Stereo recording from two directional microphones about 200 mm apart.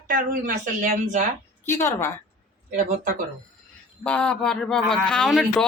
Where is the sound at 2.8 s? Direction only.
40° right (ahead or behind).